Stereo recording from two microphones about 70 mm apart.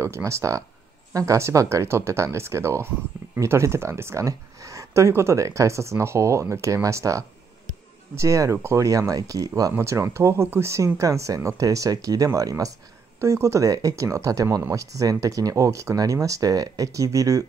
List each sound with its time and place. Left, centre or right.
0.0 s speech: right
9.8 s speech: right
13.2 s speech: right